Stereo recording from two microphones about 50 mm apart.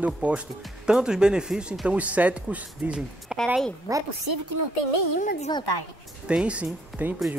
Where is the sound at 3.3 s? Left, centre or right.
Centre.